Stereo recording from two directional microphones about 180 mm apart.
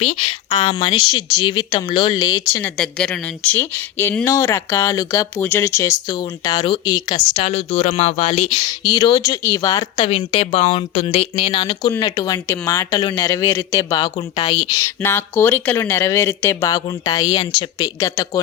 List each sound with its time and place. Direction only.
0.0 s speech: 35° left (ahead or behind)
0.7 s speech: 25° left (ahead or behind)
2.7 s speech: 5° left (ahead or behind); by 8.7 s 35° left (ahead or behind)
8.8 s speech: 20° left (ahead or behind)